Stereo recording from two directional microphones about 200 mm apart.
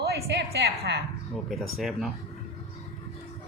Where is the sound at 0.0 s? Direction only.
55° right (ahead or behind).